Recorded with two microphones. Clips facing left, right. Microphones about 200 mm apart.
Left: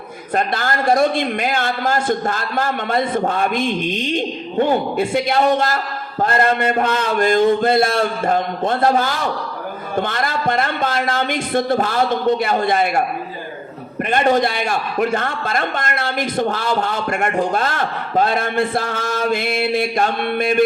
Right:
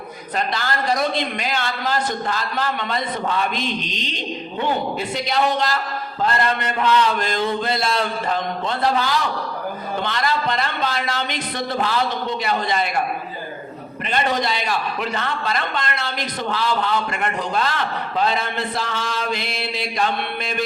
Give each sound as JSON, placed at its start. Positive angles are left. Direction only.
{"t": 0.3, "sound": "a man's voice", "side_deg": 50}
{"t": 14.0, "sound": "a man's voice", "side_deg": 50}